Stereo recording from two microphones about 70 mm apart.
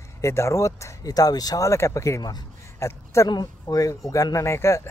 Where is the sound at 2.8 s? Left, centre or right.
Left.